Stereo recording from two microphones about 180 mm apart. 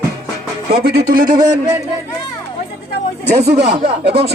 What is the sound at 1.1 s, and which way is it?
Speech, 50° right (ahead or behind).